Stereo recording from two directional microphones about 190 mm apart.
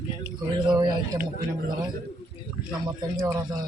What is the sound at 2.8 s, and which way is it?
Speech, 15° right (ahead or behind).